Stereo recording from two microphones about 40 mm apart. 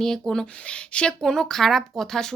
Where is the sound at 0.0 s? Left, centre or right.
Centre.